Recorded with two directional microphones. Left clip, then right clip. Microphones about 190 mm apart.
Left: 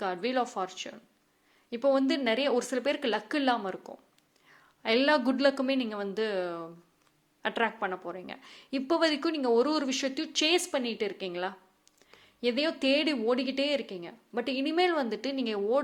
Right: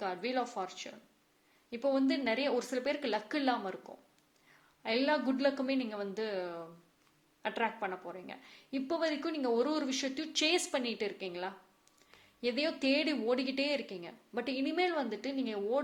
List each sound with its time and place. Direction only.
0.0 s a woman's voice: 25° left (ahead or behind)